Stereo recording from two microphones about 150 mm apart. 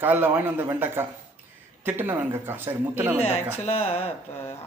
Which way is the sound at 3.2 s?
45° left (ahead or behind).